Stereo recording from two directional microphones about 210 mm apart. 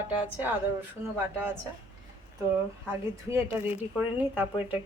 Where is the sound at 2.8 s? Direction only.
10° right (ahead or behind).